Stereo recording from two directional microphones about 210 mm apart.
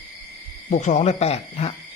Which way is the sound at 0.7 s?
35° left (ahead or behind).